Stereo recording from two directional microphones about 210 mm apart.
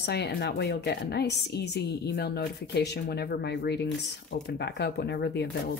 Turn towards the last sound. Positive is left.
turn(degrees=50)  # may be behind; listen again after turning